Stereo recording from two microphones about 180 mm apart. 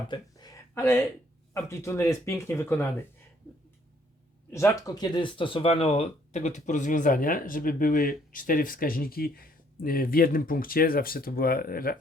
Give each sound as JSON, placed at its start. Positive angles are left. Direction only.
{"t": 0.1, "sound": "a sound", "side_deg": 20}
{"t": 1.5, "sound": "speech", "side_deg": 15}
{"t": 4.5, "sound": "speech", "side_deg": 15}